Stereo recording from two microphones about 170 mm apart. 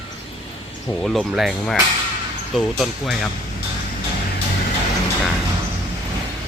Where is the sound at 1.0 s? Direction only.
Centre (ahead or behind).